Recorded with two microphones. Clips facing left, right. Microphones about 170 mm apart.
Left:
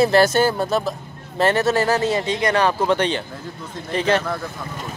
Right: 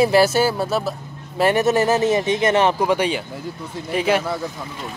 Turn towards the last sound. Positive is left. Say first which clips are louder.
# even
turn(degrees=-10)  # may be behind; listen again after turning